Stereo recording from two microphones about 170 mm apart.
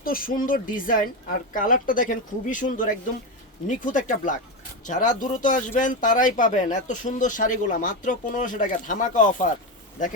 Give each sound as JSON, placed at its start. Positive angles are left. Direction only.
{"t": 0.0, "sound": "speech", "side_deg": 60}